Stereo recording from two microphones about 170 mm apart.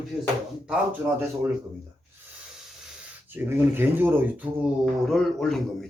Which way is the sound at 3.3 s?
10° right (ahead or behind).